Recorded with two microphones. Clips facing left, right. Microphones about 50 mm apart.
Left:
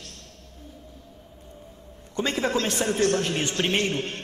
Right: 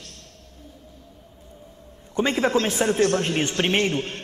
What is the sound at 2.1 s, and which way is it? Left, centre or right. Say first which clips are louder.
Speech: right 4 dB; right.